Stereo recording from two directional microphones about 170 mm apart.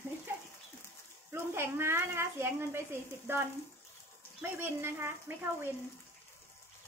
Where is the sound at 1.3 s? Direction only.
15° right (ahead or behind).